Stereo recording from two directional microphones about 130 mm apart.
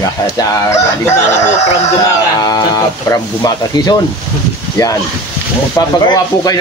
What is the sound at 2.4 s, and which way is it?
Speech, 30° left (ahead or behind).